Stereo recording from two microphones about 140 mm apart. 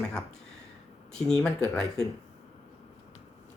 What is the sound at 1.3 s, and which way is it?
Speech, 5° left (ahead or behind).